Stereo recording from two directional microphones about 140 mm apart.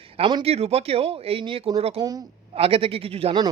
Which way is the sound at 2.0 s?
25° right (ahead or behind).